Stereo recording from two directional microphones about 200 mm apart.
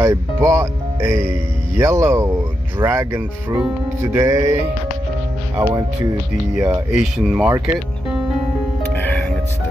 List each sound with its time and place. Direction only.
0.0 s speech: 15° right (ahead or behind)
6.9 s speech: centre (ahead or behind)
8.9 s music: 10° left (ahead or behind)